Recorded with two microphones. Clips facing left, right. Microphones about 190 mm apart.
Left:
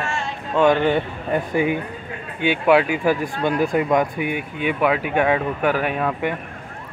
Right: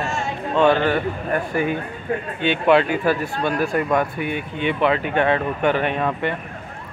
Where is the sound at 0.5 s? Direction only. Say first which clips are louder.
Left 1 dB; 15° left (ahead or behind).